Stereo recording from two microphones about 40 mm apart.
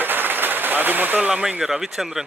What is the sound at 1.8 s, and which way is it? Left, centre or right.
Speech, centre.